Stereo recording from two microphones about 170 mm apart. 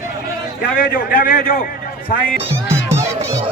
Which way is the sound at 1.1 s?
55° left (ahead or behind).